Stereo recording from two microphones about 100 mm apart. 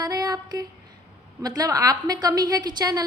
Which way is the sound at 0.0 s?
40° right (ahead or behind).